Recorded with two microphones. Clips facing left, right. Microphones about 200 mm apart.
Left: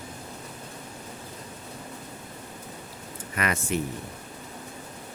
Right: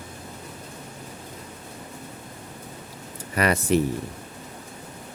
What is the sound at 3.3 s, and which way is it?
Speech, 35° right (ahead or behind).